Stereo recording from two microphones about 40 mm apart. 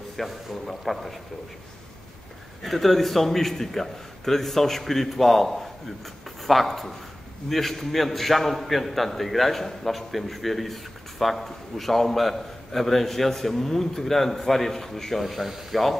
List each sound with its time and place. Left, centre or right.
0.2 s a man's voice: centre
2.6 s a man's voice: centre
15.2 s a man's voice: centre